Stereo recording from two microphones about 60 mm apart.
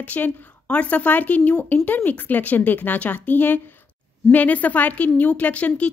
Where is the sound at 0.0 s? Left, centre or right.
Left.